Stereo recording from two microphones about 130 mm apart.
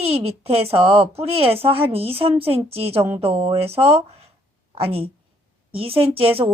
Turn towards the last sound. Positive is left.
turn(degrees=-45)  # may be behind; listen again after turning